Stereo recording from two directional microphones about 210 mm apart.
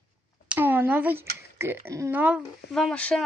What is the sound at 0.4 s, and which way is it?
Speech, 5° right (ahead or behind).